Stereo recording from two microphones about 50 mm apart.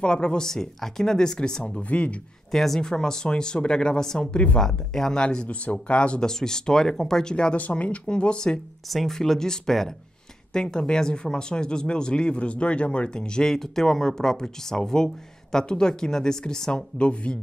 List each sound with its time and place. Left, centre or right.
0.0 s speech: centre
1.8 s speech: left
2.5 s speech: centre
7.5 s speech: left
8.8 s speech: centre; by 17.4 s left